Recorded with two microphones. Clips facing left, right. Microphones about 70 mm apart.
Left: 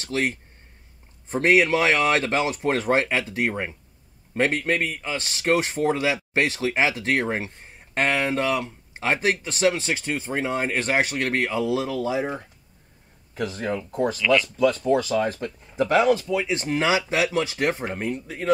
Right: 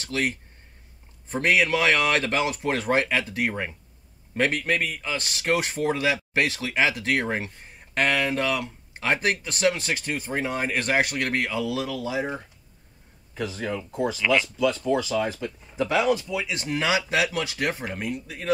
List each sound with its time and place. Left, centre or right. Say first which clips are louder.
0.0 s speech: left 2 dB; left
13.3 s speech: left 2 dB; left
14.1 s speech: left 2 dB; centre
14.9 s speech: left 3 dB; left